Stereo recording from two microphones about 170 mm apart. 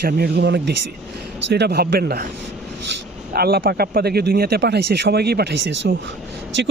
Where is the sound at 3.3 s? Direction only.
65° right (ahead or behind).